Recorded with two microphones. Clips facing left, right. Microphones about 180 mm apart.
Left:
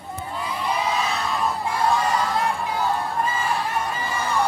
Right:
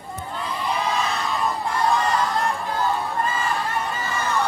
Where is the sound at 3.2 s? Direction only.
10° left (ahead or behind).